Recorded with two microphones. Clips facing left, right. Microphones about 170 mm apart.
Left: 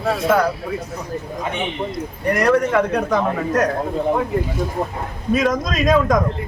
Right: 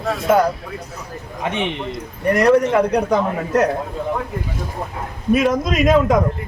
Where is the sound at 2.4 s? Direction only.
25° right (ahead or behind).